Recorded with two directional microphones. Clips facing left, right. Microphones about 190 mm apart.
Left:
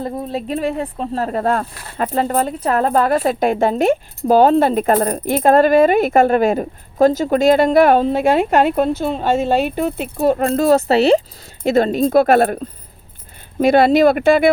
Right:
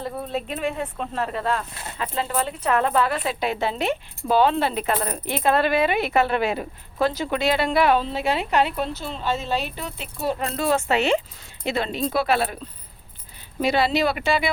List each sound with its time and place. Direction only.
0.3 s speech: 35° left (ahead or behind)
1.7 s speech: 25° right (ahead or behind)
2.0 s a woman's voice: 45° left (ahead or behind)